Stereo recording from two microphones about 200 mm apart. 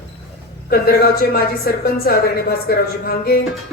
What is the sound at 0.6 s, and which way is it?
A woman's voice, 50° left (ahead or behind).